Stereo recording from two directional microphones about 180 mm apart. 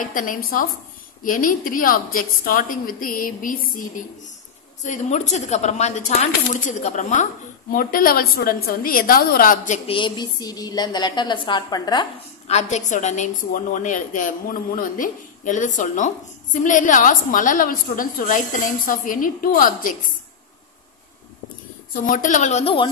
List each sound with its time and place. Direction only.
0.0 s a woman's voice: 50° left (ahead or behind)
4.8 s speech: 40° left (ahead or behind)
7.7 s a woman's voice: 55° left (ahead or behind)
9.8 s a woman's voice: 25° left (ahead or behind)
12.4 s a woman's voice: 40° left (ahead or behind)
22.0 s speech: 45° left (ahead or behind)